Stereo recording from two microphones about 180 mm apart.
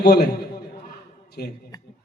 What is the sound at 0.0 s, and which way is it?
Speech, 65° left (ahead or behind).